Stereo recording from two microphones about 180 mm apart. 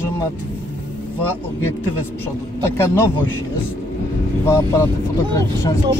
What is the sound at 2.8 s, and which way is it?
Music, 15° left (ahead or behind).